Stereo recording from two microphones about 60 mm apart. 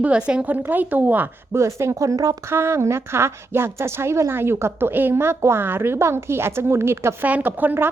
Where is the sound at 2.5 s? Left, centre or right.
Right.